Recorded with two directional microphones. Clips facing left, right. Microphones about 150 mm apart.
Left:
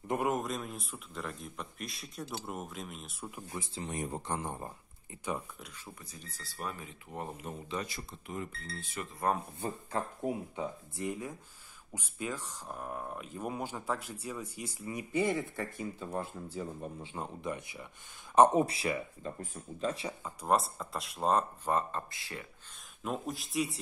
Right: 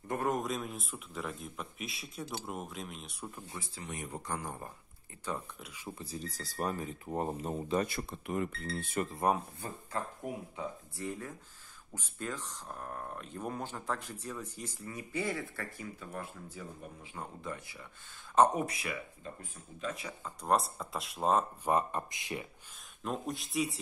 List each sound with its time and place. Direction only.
0.3 s speech: centre (ahead or behind)
3.5 s speech: 20° left (ahead or behind)
3.8 s speech: 35° left (ahead or behind)
4.3 s speech: 25° left (ahead or behind)
5.6 s speech: 10° right (ahead or behind)
5.9 s speech: 30° right (ahead or behind); by 9.0 s 55° right (ahead or behind)
9.3 s speech: 15° right (ahead or behind)
9.9 s speech: 25° left (ahead or behind)
20.2 s speech: centre (ahead or behind)
21.6 s speech: 15° right (ahead or behind)
23.0 s speech: centre (ahead or behind)